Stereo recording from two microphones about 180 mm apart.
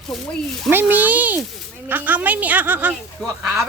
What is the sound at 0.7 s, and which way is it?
A woman's voice, 10° right (ahead or behind).